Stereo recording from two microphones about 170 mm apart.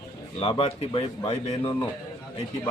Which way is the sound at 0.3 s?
35° left (ahead or behind).